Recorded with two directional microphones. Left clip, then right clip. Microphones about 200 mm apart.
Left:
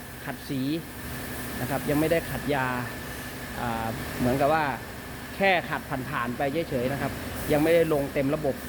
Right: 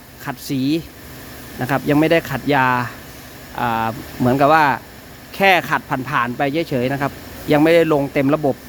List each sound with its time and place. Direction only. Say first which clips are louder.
0.3 s speech: right 10 dB; 45° right (ahead or behind)